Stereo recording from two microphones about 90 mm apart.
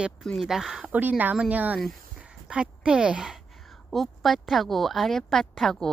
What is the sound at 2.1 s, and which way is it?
Dog, 10° right (ahead or behind).